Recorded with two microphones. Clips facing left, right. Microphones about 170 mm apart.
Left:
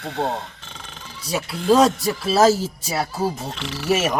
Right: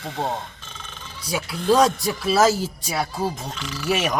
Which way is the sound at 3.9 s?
Centre (ahead or behind).